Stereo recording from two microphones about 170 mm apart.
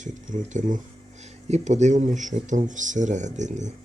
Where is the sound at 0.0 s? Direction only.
45° right (ahead or behind).